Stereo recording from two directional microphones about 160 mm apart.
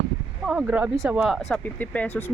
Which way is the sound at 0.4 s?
5° right (ahead or behind).